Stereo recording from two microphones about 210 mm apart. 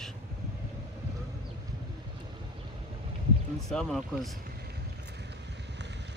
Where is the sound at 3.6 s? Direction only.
Centre (ahead or behind).